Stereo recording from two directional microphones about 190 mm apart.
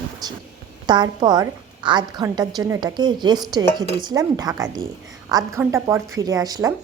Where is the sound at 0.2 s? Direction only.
20° right (ahead or behind).